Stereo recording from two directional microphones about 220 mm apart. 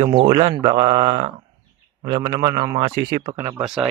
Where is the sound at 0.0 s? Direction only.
25° right (ahead or behind).